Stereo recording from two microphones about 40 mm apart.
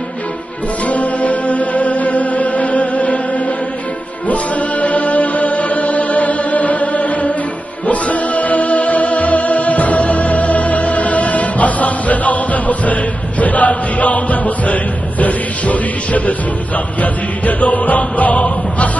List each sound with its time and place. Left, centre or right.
0.8 s music: left
4.3 s music: left